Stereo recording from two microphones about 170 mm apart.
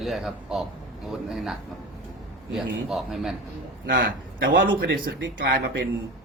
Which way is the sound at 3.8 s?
60° right (ahead or behind).